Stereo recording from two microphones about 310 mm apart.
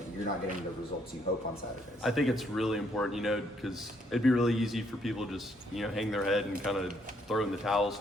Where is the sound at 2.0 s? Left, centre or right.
Centre.